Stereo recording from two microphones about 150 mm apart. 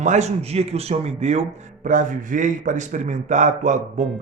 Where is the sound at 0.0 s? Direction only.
50° right (ahead or behind).